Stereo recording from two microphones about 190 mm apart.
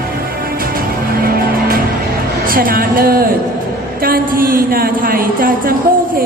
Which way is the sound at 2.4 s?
50° right (ahead or behind).